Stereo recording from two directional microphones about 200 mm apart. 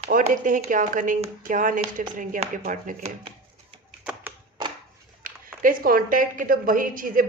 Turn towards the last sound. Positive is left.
turn(degrees=-45)  # may be behind; listen again after turning